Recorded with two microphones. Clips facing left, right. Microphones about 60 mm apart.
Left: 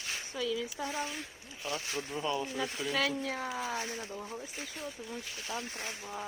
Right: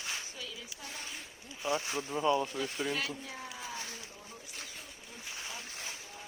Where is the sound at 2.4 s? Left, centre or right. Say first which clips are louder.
Even; centre.